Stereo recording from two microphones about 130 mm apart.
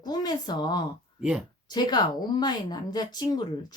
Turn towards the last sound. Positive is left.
turn(degrees=35)  # may be behind; listen again after turning